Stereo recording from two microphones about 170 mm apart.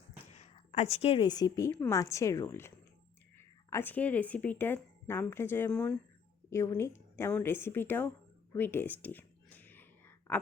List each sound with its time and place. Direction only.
0.3 s a woman's voice: 40° left (ahead or behind); by 8.1 s 10° left (ahead or behind)
8.5 s whispering: 10° left (ahead or behind)